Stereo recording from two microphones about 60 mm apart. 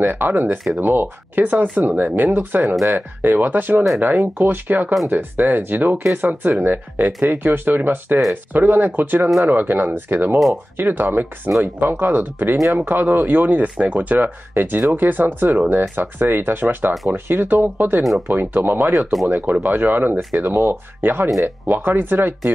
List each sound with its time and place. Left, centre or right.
0.0 s speech: right